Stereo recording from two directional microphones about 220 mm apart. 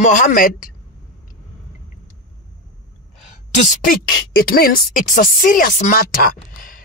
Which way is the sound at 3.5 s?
40° left (ahead or behind).